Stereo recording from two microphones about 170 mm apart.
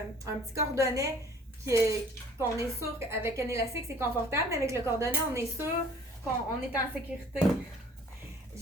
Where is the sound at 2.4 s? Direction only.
15° right (ahead or behind).